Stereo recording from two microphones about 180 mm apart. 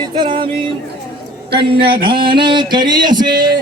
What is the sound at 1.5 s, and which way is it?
Music, 30° right (ahead or behind).